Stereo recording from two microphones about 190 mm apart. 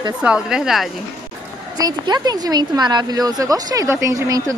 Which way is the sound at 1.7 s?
20° right (ahead or behind).